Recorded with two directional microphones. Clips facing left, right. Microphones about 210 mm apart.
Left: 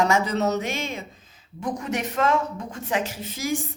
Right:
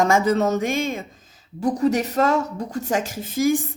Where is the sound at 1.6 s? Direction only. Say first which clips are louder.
Right 8 dB; 35° right (ahead or behind).